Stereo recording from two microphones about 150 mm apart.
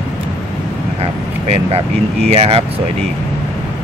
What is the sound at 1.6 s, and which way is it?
Speech, 40° right (ahead or behind).